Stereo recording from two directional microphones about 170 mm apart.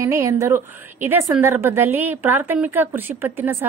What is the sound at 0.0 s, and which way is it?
A woman's voice, 15° right (ahead or behind).